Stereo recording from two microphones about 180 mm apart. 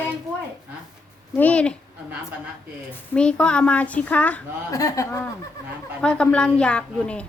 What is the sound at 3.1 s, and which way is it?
Speech, 5° left (ahead or behind).